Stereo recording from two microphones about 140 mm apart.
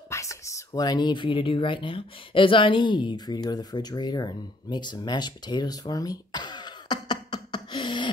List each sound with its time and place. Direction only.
0.1 s speech: 20° left (ahead or behind)